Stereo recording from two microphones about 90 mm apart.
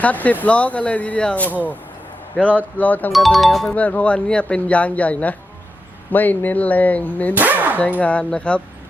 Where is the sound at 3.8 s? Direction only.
15° left (ahead or behind).